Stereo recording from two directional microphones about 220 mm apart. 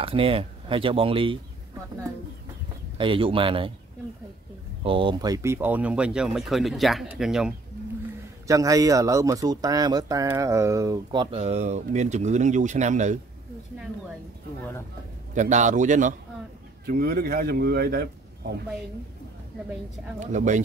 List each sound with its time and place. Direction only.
0.0 s speech: 25° right (ahead or behind)
3.0 s speech: 25° right (ahead or behind)
4.8 s speech: 25° right (ahead or behind); by 7.5 s centre (ahead or behind)
8.5 s speech: 15° right (ahead or behind); by 13.2 s 35° right (ahead or behind)
15.3 s a man's voice: 35° right (ahead or behind)
20.2 s a man's voice: 35° right (ahead or behind)